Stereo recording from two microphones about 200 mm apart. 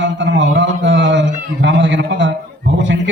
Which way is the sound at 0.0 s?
65° right (ahead or behind).